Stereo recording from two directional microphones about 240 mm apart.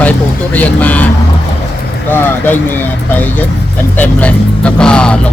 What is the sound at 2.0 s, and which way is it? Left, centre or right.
Speech, centre.